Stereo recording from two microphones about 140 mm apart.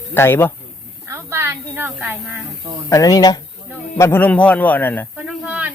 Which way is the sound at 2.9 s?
25° left (ahead or behind).